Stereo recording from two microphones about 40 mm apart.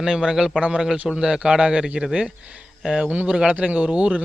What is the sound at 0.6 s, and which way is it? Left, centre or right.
A man's voice, right.